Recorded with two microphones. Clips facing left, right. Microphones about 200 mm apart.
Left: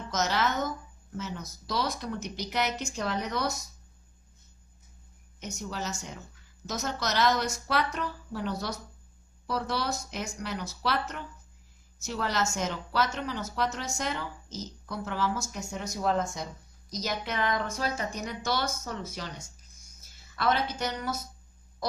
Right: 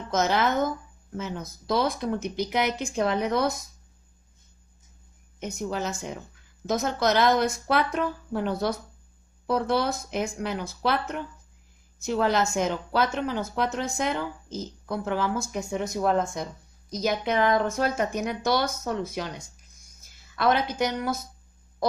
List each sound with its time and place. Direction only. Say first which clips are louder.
0.1 s speech: right 5 dB; 55° right (ahead or behind)
5.4 s speech: right 6 dB; 55° right (ahead or behind)
20.3 s speech: right 5 dB; 55° right (ahead or behind)